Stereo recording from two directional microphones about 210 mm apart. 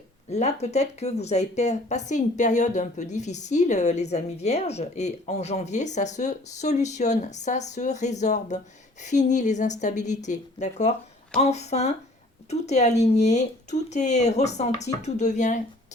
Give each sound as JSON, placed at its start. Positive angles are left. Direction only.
{"t": 0.3, "sound": "speech", "side_deg": 30}